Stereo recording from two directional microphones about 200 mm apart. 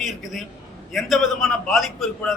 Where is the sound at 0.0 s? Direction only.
Centre (ahead or behind).